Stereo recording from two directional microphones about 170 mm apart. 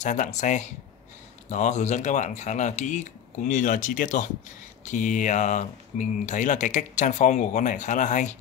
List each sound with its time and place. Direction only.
0.0 s speech: 45° left (ahead or behind)